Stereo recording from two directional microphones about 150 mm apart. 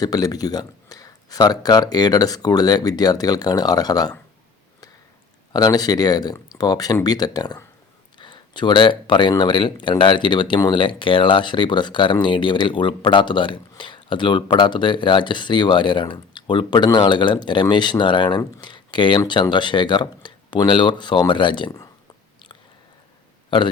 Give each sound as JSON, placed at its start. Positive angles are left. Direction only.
{"t": 0.0, "sound": "speech", "side_deg": 25}
{"t": 5.5, "sound": "speech", "side_deg": 25}